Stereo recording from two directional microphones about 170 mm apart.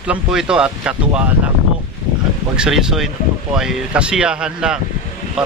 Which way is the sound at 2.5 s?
5° right (ahead or behind).